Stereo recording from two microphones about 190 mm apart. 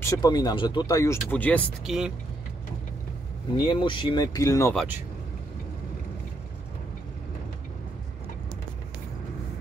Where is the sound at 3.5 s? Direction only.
25° left (ahead or behind).